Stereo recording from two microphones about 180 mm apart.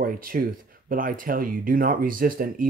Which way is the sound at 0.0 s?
50° right (ahead or behind).